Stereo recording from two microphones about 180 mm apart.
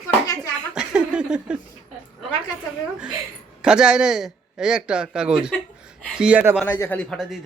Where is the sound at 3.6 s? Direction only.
5° right (ahead or behind).